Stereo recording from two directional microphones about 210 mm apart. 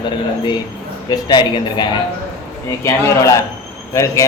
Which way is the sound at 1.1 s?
20° left (ahead or behind).